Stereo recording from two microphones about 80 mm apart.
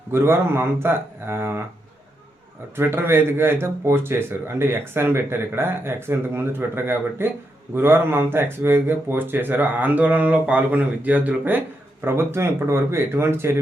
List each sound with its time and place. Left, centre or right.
0.1 s speech: right
2.7 s speech: right
12.0 s speech: right